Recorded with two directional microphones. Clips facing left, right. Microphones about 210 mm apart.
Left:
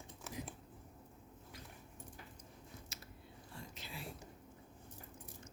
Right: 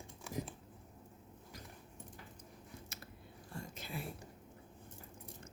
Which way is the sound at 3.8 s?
55° right (ahead or behind).